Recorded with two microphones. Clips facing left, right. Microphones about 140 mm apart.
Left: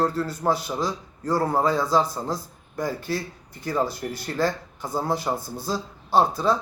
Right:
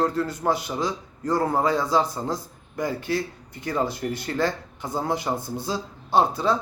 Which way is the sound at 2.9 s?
45° left (ahead or behind).